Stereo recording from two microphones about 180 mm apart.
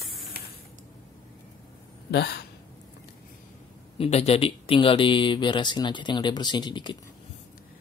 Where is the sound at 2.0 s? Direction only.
65° left (ahead or behind).